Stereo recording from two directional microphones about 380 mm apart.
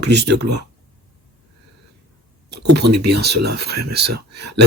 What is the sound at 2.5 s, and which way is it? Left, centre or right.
Speech, right.